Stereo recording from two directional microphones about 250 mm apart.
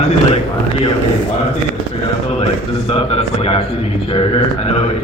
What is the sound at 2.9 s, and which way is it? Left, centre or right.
A man's voice, left.